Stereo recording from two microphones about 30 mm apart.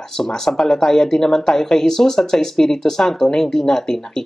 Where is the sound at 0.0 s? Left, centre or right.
Centre.